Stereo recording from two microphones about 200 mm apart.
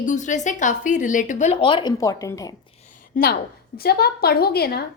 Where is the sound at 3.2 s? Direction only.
45° left (ahead or behind).